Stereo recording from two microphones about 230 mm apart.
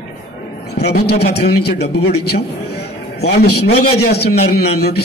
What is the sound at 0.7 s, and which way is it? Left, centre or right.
Speech, left.